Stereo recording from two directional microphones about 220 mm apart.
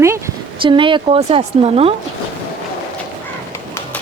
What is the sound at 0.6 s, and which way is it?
Speech, 20° right (ahead or behind).